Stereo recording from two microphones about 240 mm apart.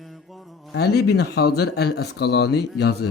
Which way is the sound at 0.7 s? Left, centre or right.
Left.